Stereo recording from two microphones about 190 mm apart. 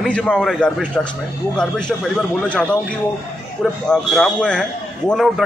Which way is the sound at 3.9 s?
5° left (ahead or behind).